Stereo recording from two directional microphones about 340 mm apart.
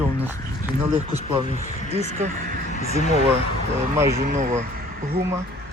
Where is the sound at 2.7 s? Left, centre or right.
Centre.